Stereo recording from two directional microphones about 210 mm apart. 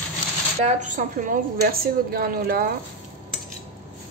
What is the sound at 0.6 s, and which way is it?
A woman's voice, 35° right (ahead or behind).